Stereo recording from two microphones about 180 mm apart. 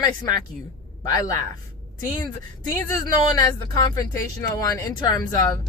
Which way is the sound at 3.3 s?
20° left (ahead or behind).